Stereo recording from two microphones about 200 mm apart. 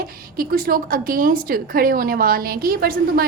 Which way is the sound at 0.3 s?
45° right (ahead or behind).